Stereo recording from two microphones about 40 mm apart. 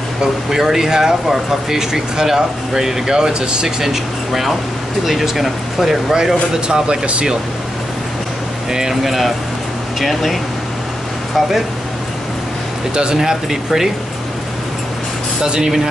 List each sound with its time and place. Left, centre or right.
0.2 s speech: centre
3.8 s speech: centre
6.1 s speech: centre
9.0 s speech: centre
12.9 s speech: right
13.2 s speech: centre
15.4 s speech: right